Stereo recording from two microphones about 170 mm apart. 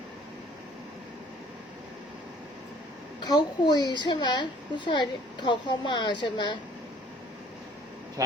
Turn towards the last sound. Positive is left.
turn(degrees=25)  # may be behind; listen again after turning